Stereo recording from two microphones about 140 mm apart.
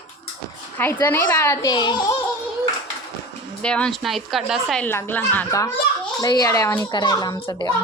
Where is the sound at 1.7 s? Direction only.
35° left (ahead or behind).